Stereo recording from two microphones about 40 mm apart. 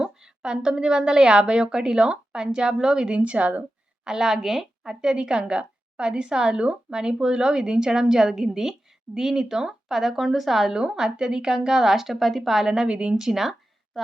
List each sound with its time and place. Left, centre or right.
0.0 s a woman's voice: right
3.2 s speech: right
4.0 s a woman's voice: centre
12.7 s a woman's voice: right
13.2 s a sound: centre